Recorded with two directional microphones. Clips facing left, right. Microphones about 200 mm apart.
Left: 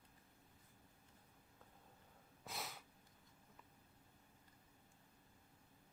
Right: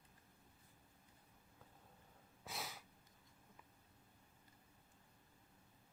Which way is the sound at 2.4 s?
Centre (ahead or behind).